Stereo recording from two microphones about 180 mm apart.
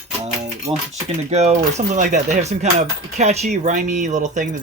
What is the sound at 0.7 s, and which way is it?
Speech, 20° right (ahead or behind).